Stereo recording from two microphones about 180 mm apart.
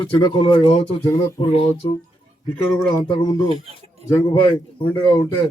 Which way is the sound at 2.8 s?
25° left (ahead or behind).